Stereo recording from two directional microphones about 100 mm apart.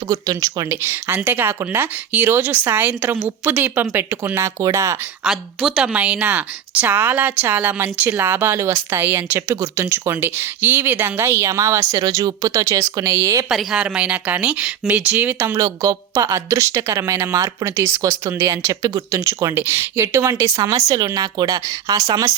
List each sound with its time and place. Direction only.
0.1 s speech: 35° right (ahead or behind)
0.8 s speech: 25° right (ahead or behind)
4.4 s speech: 30° right (ahead or behind)
5.2 s speech: 5° right (ahead or behind); by 13.4 s 30° right (ahead or behind)
13.5 s speech: 5° right (ahead or behind); by 15.5 s 20° right (ahead or behind)
15.5 s speech: 35° right (ahead or behind)